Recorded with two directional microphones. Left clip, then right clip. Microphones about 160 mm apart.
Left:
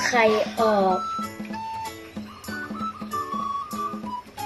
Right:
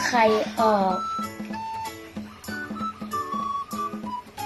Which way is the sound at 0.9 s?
Centre (ahead or behind).